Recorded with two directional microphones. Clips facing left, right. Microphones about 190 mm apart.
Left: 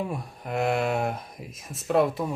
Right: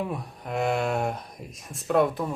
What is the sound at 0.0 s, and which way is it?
Speech, centre (ahead or behind).